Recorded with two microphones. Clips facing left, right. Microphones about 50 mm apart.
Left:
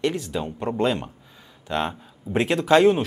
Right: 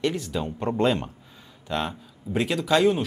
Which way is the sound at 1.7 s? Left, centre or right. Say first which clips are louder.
Left 2 dB; left.